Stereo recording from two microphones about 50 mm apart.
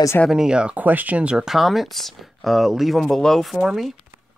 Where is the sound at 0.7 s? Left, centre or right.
Right.